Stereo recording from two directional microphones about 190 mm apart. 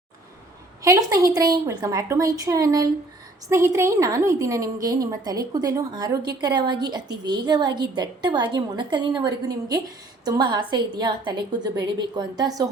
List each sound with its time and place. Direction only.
0.8 s a woman's voice: 20° right (ahead or behind)